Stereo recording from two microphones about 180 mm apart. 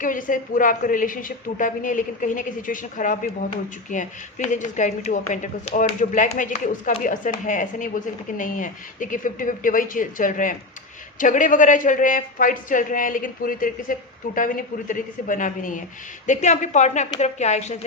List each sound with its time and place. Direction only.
0.0 s a woman's voice: 50° left (ahead or behind)